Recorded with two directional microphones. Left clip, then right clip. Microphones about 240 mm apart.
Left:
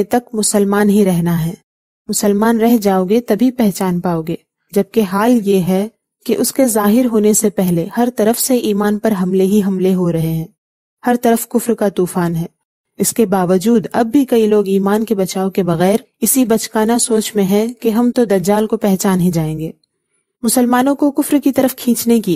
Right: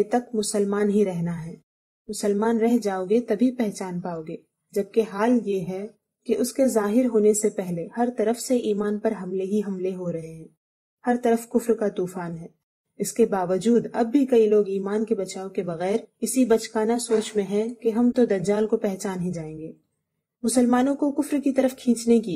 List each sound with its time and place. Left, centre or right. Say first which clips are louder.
0.1 s speech: left 9 dB; left
20.4 s speech: left 8 dB; left